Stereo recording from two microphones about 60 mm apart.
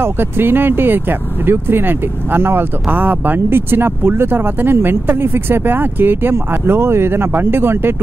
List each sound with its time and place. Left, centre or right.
0.0 s speech: right